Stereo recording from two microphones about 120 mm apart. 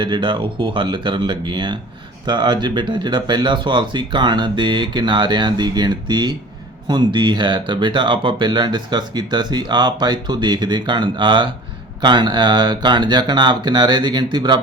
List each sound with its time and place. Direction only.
0.0 s speech: 40° right (ahead or behind)